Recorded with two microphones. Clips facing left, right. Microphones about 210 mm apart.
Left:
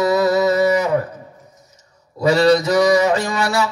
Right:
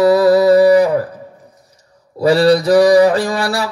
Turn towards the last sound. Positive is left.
turn(degrees=-35)  # may be behind; listen again after turning